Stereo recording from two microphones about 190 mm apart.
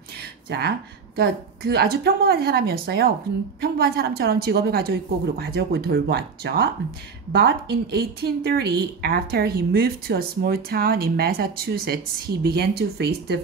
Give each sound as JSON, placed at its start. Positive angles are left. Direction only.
{"t": 0.5, "sound": "speech", "side_deg": -55}